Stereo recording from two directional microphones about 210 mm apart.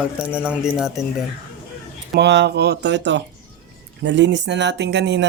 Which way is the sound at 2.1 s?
55° right (ahead or behind).